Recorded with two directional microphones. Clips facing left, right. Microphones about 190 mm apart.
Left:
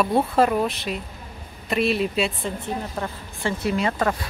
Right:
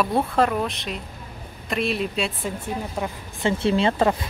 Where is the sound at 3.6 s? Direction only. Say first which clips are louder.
Right 3 dB; 25° right (ahead or behind).